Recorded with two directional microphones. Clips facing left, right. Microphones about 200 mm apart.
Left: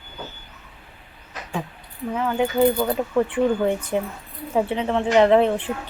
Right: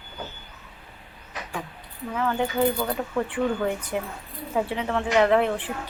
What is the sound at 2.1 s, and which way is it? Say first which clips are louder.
Speech: left 4 dB; 15° left (ahead or behind).